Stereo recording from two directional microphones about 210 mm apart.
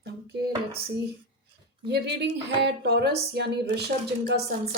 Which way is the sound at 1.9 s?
55° right (ahead or behind).